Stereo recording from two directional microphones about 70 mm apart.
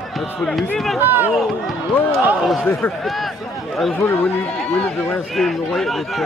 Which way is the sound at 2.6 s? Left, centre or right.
Centre.